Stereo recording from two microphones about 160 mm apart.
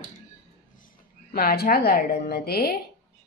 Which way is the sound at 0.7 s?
60° left (ahead or behind).